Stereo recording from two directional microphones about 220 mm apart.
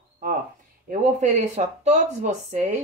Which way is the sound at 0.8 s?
30° right (ahead or behind).